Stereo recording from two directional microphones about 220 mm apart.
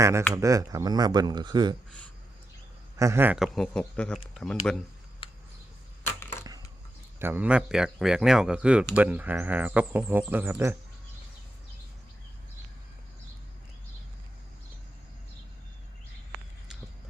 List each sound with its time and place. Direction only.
0.0 s speech: 15° right (ahead or behind)
3.0 s speech: 10° right (ahead or behind)
6.1 s a sound: 10° left (ahead or behind)
7.2 s speech: 10° right (ahead or behind)